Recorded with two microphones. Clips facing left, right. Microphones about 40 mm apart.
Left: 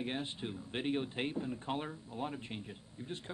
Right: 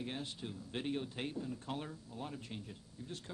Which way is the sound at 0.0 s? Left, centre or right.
Left.